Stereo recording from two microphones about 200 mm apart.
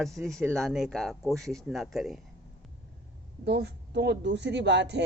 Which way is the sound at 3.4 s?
60° right (ahead or behind).